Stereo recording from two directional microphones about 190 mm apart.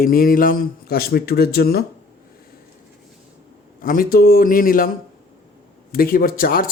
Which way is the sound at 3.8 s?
50° left (ahead or behind).